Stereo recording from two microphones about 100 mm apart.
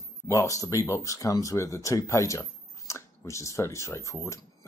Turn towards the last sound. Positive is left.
turn(degrees=30)  # may be behind; listen again after turning